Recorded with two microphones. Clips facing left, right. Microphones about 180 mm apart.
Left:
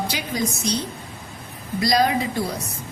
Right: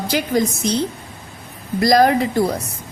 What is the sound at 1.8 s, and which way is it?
Speech, 50° right (ahead or behind).